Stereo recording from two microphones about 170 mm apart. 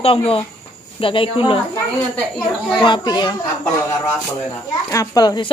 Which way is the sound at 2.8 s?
25° left (ahead or behind).